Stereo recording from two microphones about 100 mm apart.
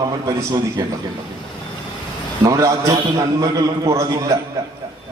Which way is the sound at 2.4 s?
35° right (ahead or behind).